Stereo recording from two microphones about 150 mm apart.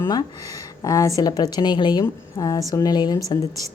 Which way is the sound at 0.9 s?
25° left (ahead or behind).